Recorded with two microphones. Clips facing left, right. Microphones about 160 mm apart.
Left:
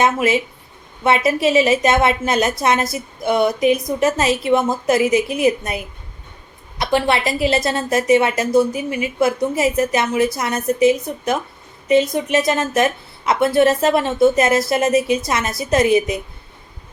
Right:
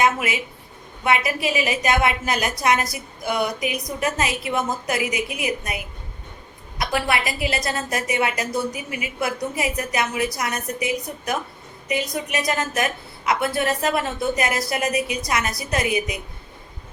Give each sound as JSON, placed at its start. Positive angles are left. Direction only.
{"t": 0.0, "sound": "a woman's voice", "side_deg": 25}